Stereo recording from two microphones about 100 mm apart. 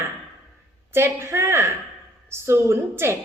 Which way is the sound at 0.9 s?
25° right (ahead or behind).